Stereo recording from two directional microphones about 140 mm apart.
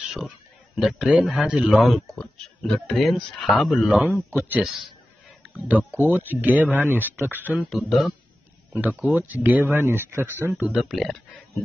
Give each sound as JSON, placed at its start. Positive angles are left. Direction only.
{"t": 0.0, "sound": "a sound", "side_deg": 0}
{"t": 0.7, "sound": "speech", "side_deg": 0}
{"t": 7.6, "sound": "speech", "side_deg": 0}
{"t": 9.1, "sound": "speech", "side_deg": -10}
{"t": 10.5, "sound": "speech", "side_deg": -5}